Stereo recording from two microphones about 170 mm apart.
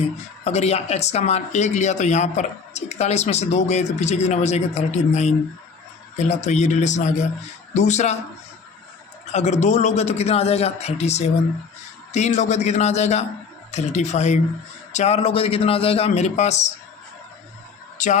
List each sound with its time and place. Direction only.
0.4 s a man's voice: 40° left (ahead or behind)
9.3 s a man's voice: 40° left (ahead or behind)
17.9 s a sound: 45° left (ahead or behind)